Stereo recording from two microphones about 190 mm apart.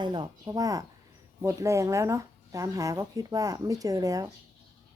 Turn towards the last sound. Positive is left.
turn(degrees=-20)  # may be behind; listen again after turning